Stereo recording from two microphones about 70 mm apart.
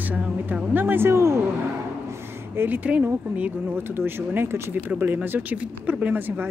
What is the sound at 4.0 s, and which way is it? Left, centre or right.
Speech, right.